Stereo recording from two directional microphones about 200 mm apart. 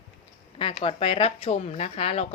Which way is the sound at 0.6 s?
30° left (ahead or behind).